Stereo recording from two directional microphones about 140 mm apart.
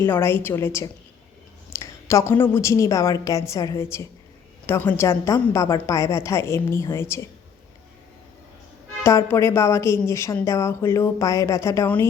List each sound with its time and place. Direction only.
0.0 s a woman's voice: 15° left (ahead or behind)
1.7 s a sound: 20° left (ahead or behind)
2.4 s a woman's voice: 20° left (ahead or behind)
9.0 s a woman's voice: 20° left (ahead or behind)